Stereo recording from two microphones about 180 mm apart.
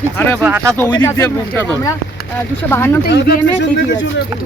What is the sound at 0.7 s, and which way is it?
Speech, 10° left (ahead or behind).